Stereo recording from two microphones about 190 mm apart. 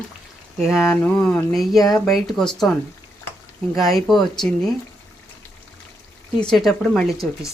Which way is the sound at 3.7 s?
Centre (ahead or behind).